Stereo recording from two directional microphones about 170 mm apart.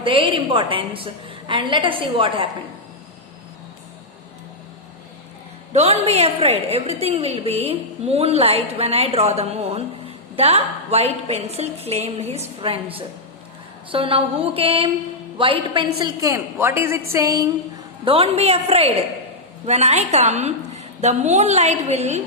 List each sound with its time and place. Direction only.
0.0 s a woman's voice: 30° right (ahead or behind)
5.7 s a woman's voice: 40° right (ahead or behind); by 17.5 s 20° right (ahead or behind)
18.0 s a woman's voice: 35° right (ahead or behind)